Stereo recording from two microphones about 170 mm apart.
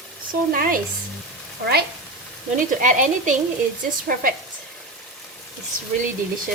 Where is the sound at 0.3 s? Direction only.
55° right (ahead or behind).